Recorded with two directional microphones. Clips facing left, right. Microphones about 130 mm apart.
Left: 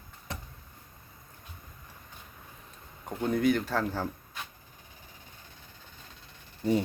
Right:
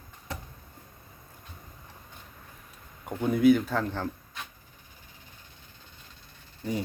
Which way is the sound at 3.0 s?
5° right (ahead or behind).